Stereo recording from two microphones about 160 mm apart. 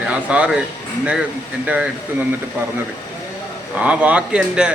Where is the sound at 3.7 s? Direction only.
10° right (ahead or behind).